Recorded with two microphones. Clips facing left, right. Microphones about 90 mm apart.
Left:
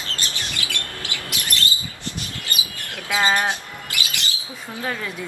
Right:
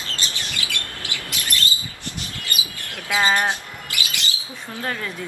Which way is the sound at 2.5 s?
25° left (ahead or behind).